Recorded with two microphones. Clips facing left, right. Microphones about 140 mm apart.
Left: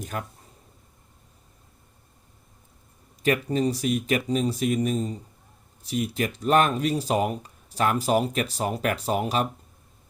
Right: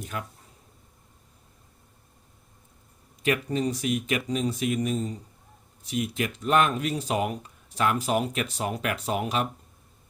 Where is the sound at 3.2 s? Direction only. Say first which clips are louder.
Left 3 dB; 40° left (ahead or behind).